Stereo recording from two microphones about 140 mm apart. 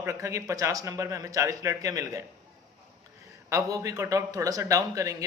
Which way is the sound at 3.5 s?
25° right (ahead or behind).